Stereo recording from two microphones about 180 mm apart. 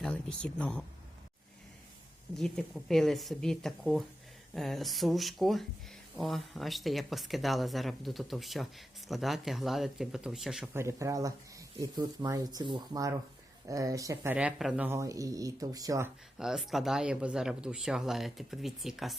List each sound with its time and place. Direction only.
0.0 s speech: 5° left (ahead or behind)
2.3 s speech: centre (ahead or behind)
10.8 s speech: 15° right (ahead or behind)
16.4 s speech: centre (ahead or behind)